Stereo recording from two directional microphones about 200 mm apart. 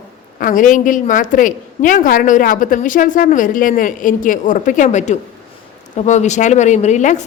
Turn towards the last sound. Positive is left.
turn(degrees=35)  # may be behind; listen again after turning